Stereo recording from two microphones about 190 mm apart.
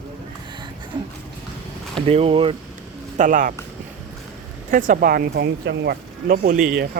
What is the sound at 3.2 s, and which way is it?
Speech, 45° right (ahead or behind).